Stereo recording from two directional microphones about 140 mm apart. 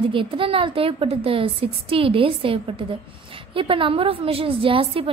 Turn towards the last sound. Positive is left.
turn(degrees=-40)  # may be behind; listen again after turning